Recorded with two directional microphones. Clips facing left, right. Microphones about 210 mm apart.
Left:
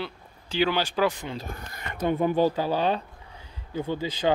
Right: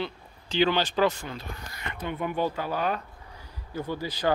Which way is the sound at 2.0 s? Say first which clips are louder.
Left 7 dB; 35° left (ahead or behind).